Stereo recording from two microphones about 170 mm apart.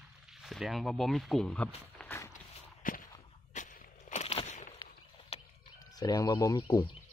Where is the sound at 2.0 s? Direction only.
15° left (ahead or behind).